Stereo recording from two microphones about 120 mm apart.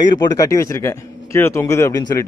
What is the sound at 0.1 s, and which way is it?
Speech, 35° left (ahead or behind).